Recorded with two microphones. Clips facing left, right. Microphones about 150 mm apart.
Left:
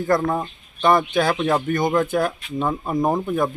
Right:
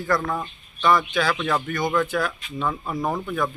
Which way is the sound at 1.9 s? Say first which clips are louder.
Left 3 dB; 45° left (ahead or behind).